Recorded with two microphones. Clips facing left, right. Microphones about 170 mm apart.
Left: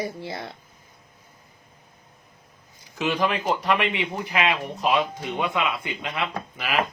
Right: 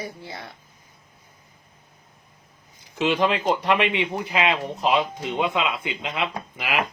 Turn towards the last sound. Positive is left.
turn(degrees=-15)  # may be behind; listen again after turning